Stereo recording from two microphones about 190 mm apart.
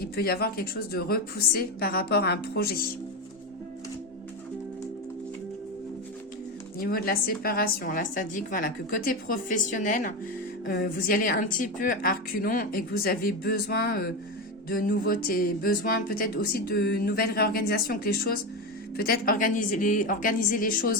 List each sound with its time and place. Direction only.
0.0 s speech: 55° left (ahead or behind)
6.7 s speech: 50° left (ahead or behind)